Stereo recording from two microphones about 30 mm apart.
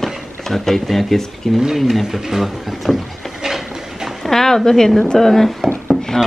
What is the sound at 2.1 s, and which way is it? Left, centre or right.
Speech, centre.